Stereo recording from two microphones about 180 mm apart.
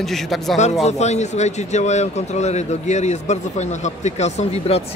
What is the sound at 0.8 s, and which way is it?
Speech, 40° left (ahead or behind).